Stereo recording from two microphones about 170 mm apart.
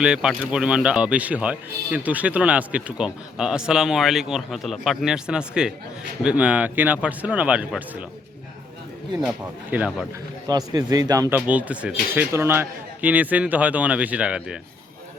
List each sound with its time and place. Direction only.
0.0 s a man's voice: 5° right (ahead or behind)
9.2 s a man's voice: 5° right (ahead or behind)
10.4 s a man's voice: 20° right (ahead or behind); by 14.5 s 5° right (ahead or behind)